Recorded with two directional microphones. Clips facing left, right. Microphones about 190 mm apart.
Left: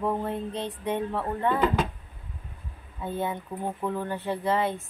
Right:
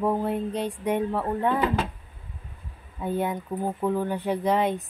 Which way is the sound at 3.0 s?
15° right (ahead or behind).